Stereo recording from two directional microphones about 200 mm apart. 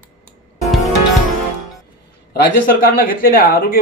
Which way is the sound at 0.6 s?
Centre (ahead or behind).